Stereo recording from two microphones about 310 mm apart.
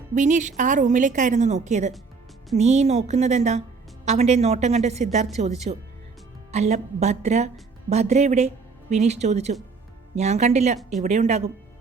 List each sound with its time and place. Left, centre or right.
0.1 s a woman's voice: right